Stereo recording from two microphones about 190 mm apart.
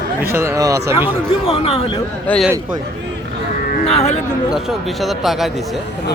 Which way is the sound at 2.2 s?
5° left (ahead or behind).